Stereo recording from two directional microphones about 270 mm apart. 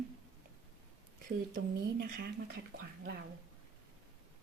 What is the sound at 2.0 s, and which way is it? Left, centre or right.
Speech, right.